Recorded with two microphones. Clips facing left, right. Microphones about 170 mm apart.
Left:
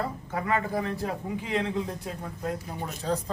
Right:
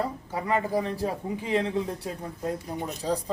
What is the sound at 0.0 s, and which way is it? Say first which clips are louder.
A man's voice: right 1 dB; 15° right (ahead or behind).